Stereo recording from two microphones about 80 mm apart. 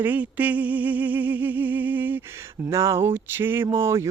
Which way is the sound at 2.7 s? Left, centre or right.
Right.